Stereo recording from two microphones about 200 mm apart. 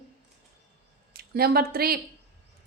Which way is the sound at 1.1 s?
50° right (ahead or behind).